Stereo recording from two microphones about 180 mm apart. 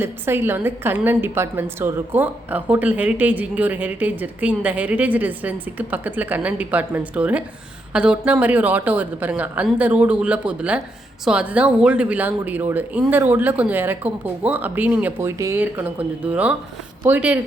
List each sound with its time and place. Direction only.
0.0 s a woman's voice: 10° right (ahead or behind)